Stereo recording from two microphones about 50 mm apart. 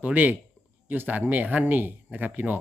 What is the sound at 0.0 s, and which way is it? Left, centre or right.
Speech, right.